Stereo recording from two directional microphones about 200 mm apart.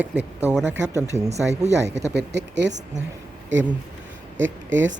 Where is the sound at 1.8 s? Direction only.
60° right (ahead or behind).